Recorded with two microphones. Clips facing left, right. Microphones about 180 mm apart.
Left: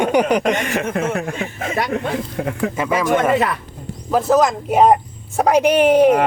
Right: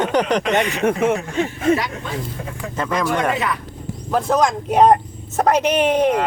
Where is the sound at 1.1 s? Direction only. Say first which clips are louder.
Right 2 dB; 60° left (ahead or behind).